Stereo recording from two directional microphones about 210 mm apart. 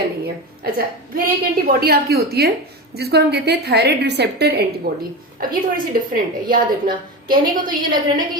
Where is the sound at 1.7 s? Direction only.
45° right (ahead or behind).